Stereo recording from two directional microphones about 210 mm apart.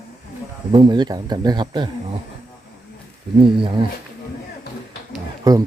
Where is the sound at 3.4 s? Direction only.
25° right (ahead or behind).